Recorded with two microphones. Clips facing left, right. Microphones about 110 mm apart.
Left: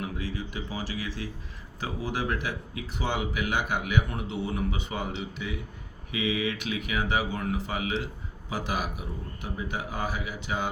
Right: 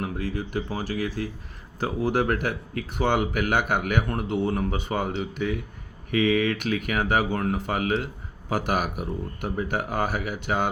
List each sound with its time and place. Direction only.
0.0 s speech: 50° right (ahead or behind)